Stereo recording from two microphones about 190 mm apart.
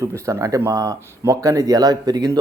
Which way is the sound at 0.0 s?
15° right (ahead or behind).